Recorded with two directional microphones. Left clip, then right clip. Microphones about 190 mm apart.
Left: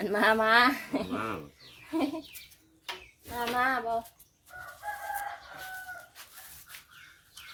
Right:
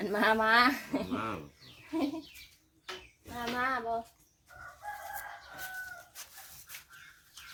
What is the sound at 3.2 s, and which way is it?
Speech, 40° left (ahead or behind).